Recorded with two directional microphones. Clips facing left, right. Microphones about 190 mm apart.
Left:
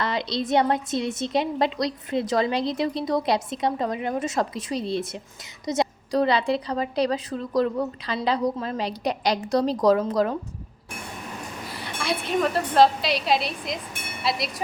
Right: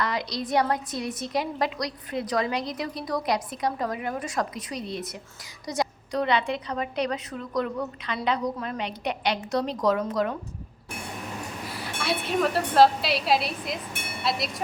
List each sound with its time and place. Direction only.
0.0 s a woman's voice: 25° left (ahead or behind)
11.6 s a woman's voice: centre (ahead or behind)